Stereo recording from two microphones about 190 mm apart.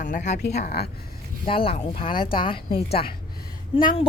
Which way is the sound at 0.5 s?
55° left (ahead or behind).